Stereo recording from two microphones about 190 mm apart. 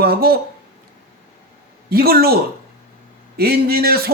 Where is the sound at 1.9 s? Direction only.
55° right (ahead or behind).